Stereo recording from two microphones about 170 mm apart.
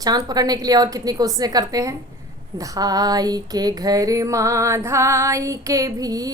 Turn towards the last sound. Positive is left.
turn(degrees=-20)  # may be behind; listen again after turning